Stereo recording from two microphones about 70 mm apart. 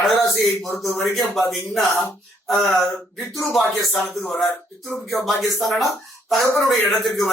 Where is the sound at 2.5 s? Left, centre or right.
Centre.